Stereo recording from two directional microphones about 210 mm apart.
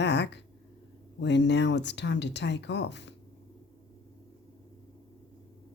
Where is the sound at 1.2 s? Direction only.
55° left (ahead or behind).